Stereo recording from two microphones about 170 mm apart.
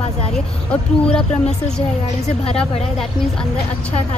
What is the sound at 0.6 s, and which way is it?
Speech, 5° left (ahead or behind).